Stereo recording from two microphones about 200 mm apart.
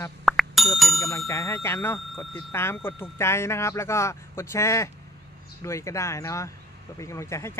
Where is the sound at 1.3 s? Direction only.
15° left (ahead or behind).